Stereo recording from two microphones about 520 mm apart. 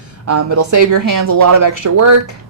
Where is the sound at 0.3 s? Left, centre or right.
Right.